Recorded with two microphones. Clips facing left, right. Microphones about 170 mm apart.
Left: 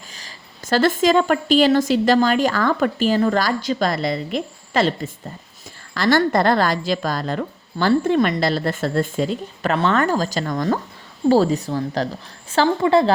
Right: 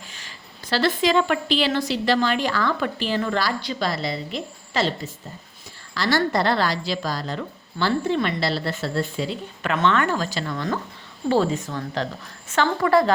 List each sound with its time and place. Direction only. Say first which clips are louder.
0.1 s a woman's voice: left 1 dB; 40° left (ahead or behind)